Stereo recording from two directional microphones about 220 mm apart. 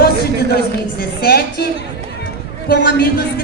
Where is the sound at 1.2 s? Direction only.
45° left (ahead or behind).